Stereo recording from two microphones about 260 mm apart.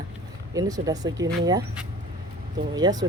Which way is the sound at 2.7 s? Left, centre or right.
Centre.